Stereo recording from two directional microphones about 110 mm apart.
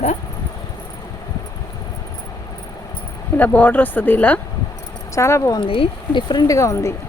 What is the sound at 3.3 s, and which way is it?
Speech, 15° left (ahead or behind).